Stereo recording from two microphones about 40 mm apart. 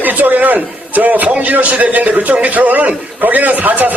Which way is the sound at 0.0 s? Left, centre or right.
Right.